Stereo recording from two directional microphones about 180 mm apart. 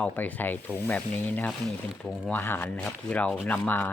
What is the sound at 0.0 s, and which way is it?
Speech, 10° left (ahead or behind).